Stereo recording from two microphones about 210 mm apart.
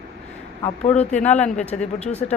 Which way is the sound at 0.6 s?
30° left (ahead or behind).